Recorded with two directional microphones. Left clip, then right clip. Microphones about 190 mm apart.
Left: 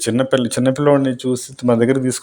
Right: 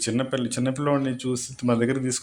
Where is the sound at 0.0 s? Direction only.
40° left (ahead or behind).